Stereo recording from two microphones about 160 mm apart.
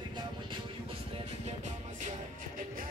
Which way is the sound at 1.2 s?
50° right (ahead or behind).